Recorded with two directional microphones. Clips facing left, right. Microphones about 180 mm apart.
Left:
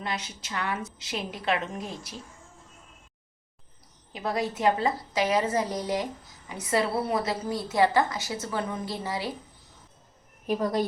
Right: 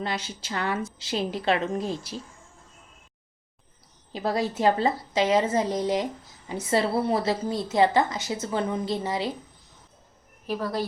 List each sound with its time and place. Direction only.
0.0 s a woman's voice: 30° right (ahead or behind)
4.1 s a woman's voice: 30° right (ahead or behind)